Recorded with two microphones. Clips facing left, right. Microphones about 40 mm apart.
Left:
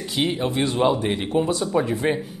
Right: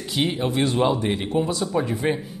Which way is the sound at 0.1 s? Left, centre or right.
Centre.